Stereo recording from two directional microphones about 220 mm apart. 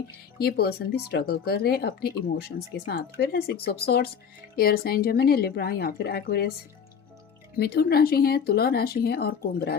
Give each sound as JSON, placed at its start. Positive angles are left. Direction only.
{"t": 0.4, "sound": "speech", "side_deg": 45}
{"t": 7.5, "sound": "speech", "side_deg": 45}